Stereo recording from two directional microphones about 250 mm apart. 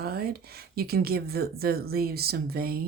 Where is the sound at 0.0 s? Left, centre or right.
Right.